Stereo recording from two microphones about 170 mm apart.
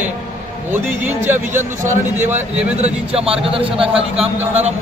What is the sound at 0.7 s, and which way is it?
A man's voice, 10° right (ahead or behind).